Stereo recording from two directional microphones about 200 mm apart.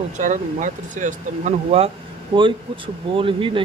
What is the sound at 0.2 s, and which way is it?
Speech, 40° right (ahead or behind).